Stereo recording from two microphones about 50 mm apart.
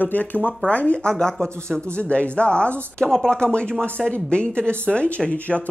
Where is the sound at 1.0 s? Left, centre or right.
Centre.